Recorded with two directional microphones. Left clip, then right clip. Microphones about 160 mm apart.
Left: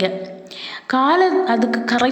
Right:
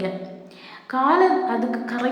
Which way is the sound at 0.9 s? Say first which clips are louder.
Left 3 dB; 30° left (ahead or behind).